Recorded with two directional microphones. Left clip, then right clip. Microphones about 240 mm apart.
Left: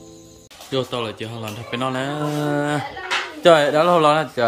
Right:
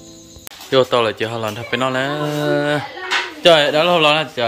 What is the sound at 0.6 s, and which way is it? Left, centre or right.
A man's voice, centre.